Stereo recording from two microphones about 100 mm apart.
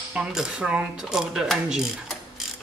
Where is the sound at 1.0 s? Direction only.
5° right (ahead or behind).